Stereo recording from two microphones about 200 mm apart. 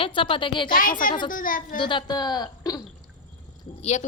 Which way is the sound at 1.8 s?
25° left (ahead or behind).